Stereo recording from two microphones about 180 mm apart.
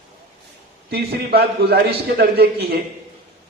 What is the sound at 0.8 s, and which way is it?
A man's voice, 65° right (ahead or behind).